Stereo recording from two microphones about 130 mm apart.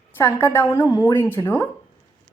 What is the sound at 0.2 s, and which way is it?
A woman's voice, 20° left (ahead or behind).